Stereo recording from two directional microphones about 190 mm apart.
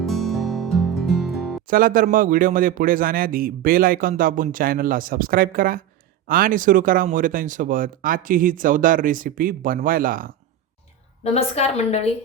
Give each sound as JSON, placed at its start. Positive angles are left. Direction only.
{"t": 0.0, "sound": "music", "side_deg": 0}
{"t": 1.6, "sound": "a man's voice", "side_deg": -45}
{"t": 11.2, "sound": "a woman's voice", "side_deg": 35}